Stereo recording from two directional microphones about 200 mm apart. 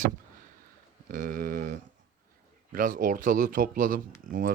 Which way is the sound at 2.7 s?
45° right (ahead or behind).